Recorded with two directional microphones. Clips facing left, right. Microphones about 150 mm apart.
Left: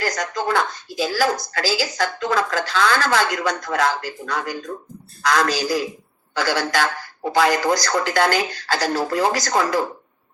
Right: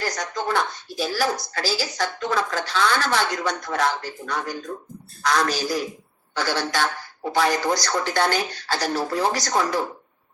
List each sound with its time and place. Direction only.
0.0 s a woman's voice: 90° left